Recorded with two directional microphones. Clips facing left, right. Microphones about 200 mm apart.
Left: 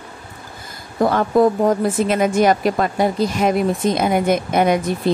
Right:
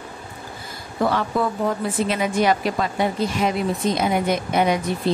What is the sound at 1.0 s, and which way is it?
A woman's voice, 45° left (ahead or behind).